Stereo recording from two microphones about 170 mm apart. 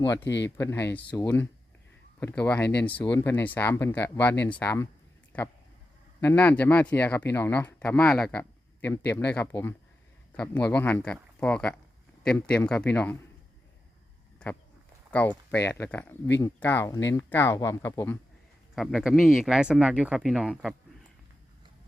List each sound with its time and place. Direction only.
0.0 s speech: 15° left (ahead or behind)
0.3 s speech: 90° left
0.5 s speech: 15° left (ahead or behind)
2.2 s speech: 5° left (ahead or behind)
6.1 s speech: 10° left (ahead or behind)
15.1 s speech: 10° left (ahead or behind)
18.8 s speech: centre (ahead or behind)